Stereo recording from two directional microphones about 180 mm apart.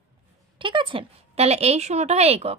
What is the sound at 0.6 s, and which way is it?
A woman's voice, 25° right (ahead or behind).